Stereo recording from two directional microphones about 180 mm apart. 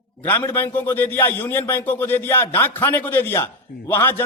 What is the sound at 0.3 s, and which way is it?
A man's voice, 10° left (ahead or behind).